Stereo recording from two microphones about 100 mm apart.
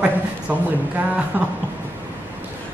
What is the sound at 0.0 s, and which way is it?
A woman's voice, 15° right (ahead or behind).